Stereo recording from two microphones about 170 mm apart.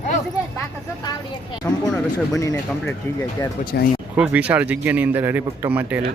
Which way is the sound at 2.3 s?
20° left (ahead or behind).